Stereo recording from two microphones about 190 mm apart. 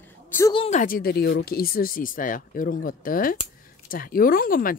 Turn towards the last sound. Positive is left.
turn(degrees=50)  # may be behind; listen again after turning